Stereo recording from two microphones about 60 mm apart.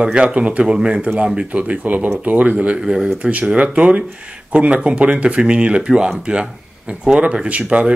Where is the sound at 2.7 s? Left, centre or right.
Centre.